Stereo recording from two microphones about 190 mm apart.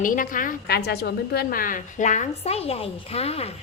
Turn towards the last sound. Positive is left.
turn(degrees=30)  # may be behind; listen again after turning